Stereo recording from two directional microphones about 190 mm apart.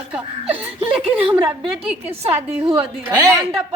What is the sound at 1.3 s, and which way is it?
Speech, 25° right (ahead or behind).